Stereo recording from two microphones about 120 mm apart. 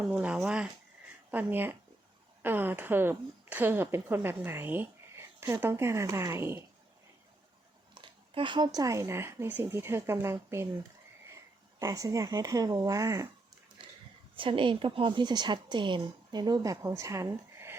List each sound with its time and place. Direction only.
0.0 s a woman's voice: 10° right (ahead or behind)
7.9 s speech: 45° right (ahead or behind); by 10.7 s 20° right (ahead or behind)
11.8 s speech: 30° right (ahead or behind)
14.3 s a woman's voice: 45° right (ahead or behind)
16.8 s speech: 25° right (ahead or behind)